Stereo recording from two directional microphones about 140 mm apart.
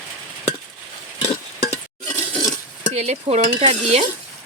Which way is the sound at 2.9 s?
50° right (ahead or behind).